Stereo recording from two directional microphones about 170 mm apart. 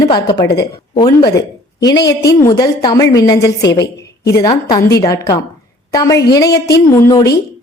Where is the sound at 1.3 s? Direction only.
20° left (ahead or behind).